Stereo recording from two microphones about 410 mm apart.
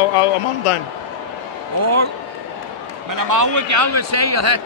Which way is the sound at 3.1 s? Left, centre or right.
Right.